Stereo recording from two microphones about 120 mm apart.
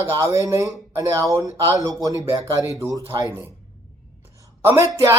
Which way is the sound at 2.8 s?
25° right (ahead or behind).